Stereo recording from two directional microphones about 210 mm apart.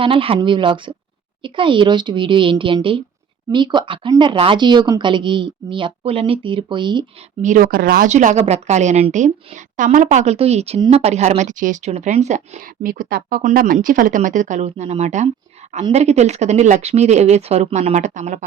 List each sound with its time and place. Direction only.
0.0 s speech: 25° right (ahead or behind)
7.4 s speech: 40° right (ahead or behind)